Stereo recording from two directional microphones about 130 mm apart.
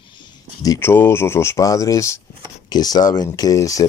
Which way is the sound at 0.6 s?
25° left (ahead or behind).